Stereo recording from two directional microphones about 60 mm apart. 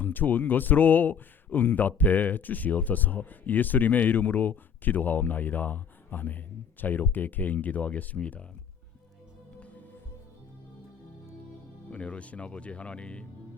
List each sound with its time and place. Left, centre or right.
0.0 s speech: left
11.9 s speech: centre